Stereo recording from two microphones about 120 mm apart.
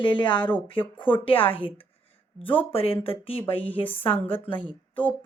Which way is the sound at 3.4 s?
15° left (ahead or behind).